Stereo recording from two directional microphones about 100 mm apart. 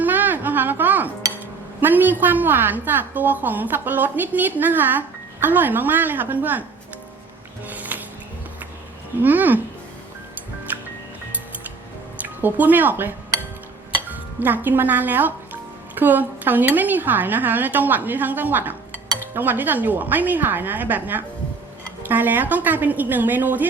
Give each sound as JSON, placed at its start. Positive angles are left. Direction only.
{"t": 0.0, "sound": "a sound", "side_deg": -20}
{"t": 1.8, "sound": "a woman's voice", "side_deg": -20}
{"t": 7.7, "sound": "music", "side_deg": -15}
{"t": 9.2, "sound": "speech", "side_deg": -20}
{"t": 10.7, "sound": "music", "side_deg": -15}
{"t": 12.2, "sound": "a woman's voice", "side_deg": -20}